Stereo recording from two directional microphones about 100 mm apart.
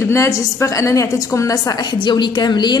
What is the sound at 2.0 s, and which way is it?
Speech, 50° left (ahead or behind).